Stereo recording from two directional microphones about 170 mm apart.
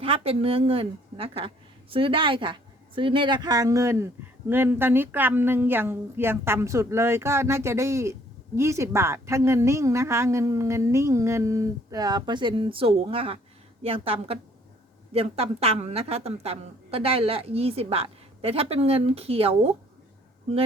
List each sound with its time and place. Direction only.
0.0 s a woman's voice: 35° right (ahead or behind)